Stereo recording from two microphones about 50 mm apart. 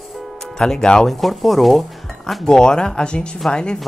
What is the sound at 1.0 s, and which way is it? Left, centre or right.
Speech, centre.